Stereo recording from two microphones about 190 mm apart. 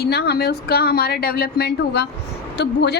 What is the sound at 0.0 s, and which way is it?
A woman's voice, 60° left (ahead or behind).